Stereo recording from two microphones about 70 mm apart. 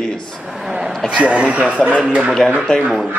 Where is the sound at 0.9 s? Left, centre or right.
Centre.